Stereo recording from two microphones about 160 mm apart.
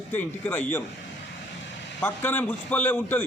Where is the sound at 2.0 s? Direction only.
10° left (ahead or behind).